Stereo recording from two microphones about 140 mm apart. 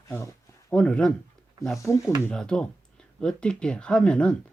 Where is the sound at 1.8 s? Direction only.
20° left (ahead or behind).